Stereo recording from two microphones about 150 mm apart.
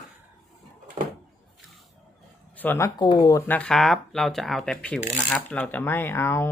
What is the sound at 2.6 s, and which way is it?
Speech, 15° left (ahead or behind).